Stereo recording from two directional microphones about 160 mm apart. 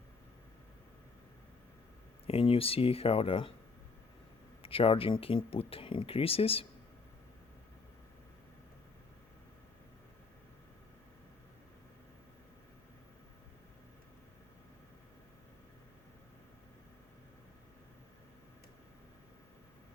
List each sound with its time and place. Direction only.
2.2 s speech: 35° left (ahead or behind)
4.6 s speech: 35° left (ahead or behind)